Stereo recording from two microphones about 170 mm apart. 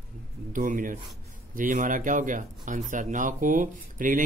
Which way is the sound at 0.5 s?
50° right (ahead or behind).